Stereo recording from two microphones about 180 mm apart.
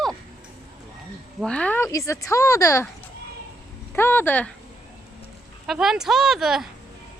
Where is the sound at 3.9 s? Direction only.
10° left (ahead or behind).